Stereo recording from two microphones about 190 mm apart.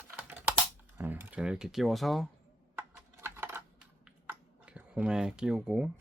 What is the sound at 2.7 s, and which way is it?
Typing, 10° right (ahead or behind).